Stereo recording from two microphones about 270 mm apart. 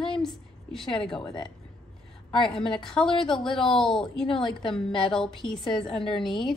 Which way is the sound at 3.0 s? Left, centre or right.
Centre.